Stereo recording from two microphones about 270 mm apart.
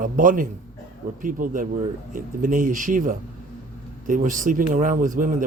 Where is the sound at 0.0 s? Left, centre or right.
Right.